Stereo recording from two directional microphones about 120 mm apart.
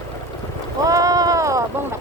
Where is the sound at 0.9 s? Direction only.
30° right (ahead or behind).